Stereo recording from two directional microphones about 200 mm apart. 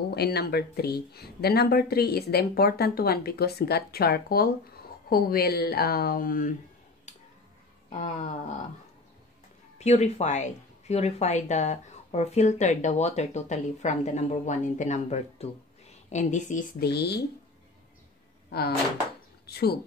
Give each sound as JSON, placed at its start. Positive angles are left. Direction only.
{"t": 0.1, "sound": "speech", "side_deg": 55}
{"t": 7.1, "sound": "music", "side_deg": 35}
{"t": 7.9, "sound": "a woman's voice", "side_deg": 40}
{"t": 9.8, "sound": "a woman's voice", "side_deg": 35}
{"t": 16.8, "sound": "speech", "side_deg": 55}
{"t": 19.4, "sound": "speech", "side_deg": 50}